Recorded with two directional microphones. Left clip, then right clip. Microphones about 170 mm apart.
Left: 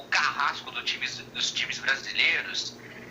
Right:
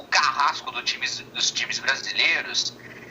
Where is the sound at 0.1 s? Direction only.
20° left (ahead or behind).